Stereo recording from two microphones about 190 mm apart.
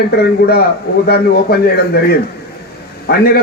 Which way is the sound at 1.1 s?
55° left (ahead or behind).